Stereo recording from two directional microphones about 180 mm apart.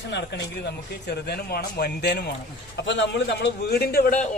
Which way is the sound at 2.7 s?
80° left.